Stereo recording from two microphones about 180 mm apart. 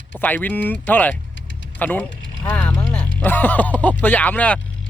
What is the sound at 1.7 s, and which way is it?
Speech, 10° left (ahead or behind).